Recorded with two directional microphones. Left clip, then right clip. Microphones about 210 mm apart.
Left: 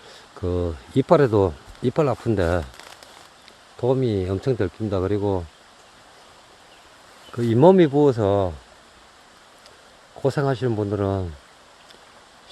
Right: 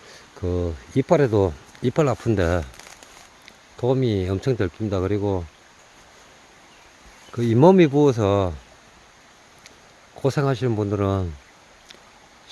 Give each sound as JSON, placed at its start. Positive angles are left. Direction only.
{"t": 0.1, "sound": "speech", "side_deg": 0}
{"t": 7.3, "sound": "speech", "side_deg": -15}
{"t": 10.2, "sound": "speech", "side_deg": -15}